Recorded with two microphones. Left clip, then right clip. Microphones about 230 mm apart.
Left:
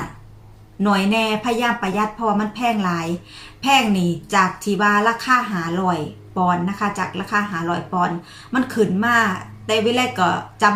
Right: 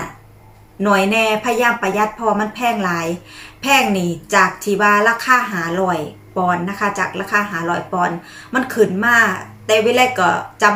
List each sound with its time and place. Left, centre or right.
0.8 s a woman's voice: centre